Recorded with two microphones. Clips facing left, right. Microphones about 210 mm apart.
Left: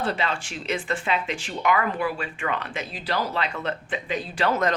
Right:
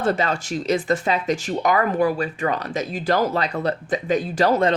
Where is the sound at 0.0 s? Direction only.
45° right (ahead or behind).